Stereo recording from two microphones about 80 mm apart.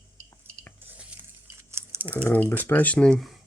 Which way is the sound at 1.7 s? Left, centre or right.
Right.